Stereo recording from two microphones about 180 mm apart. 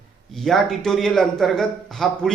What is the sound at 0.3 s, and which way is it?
A man's voice, centre (ahead or behind).